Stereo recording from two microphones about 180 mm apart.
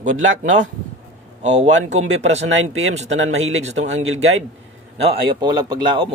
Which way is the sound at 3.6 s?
40° right (ahead or behind).